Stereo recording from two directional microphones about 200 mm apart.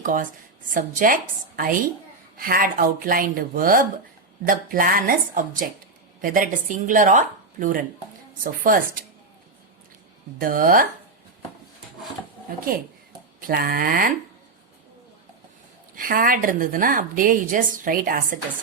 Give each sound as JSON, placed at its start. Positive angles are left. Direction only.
{"t": 0.0, "sound": "a woman's voice", "side_deg": -40}
{"t": 10.4, "sound": "a woman's voice", "side_deg": -45}
{"t": 12.5, "sound": "a woman's voice", "side_deg": -45}
{"t": 16.0, "sound": "a woman's voice", "side_deg": -45}